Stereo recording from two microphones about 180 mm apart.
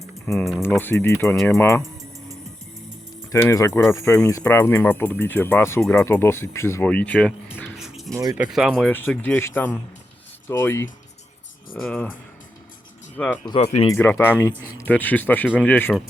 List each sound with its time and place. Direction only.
0.0 s music: 15° left (ahead or behind)
0.6 s speech: 10° left (ahead or behind)
3.3 s speech: 15° left (ahead or behind)
7.8 s music: centre (ahead or behind)
8.1 s speech: 20° right (ahead or behind)
8.5 s speech: centre (ahead or behind)
13.4 s speech: 30° left (ahead or behind)
13.8 s speech: 15° left (ahead or behind)